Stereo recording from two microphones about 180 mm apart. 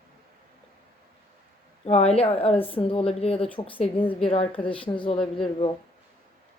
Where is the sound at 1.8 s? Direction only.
35° left (ahead or behind).